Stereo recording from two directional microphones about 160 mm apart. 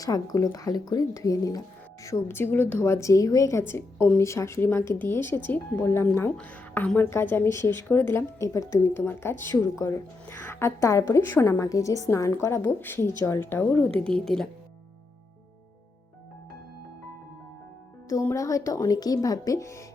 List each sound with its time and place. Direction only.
0.0 s speech: 25° left (ahead or behind); by 14.4 s 5° left (ahead or behind)
18.1 s speech: 15° left (ahead or behind)